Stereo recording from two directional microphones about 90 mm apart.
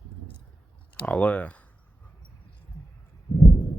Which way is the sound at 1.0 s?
15° left (ahead or behind).